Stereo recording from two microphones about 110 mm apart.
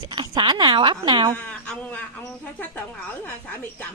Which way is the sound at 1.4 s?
10° left (ahead or behind).